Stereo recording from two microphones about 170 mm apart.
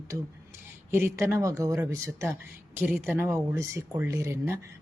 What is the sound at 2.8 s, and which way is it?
Speech, 5° right (ahead or behind).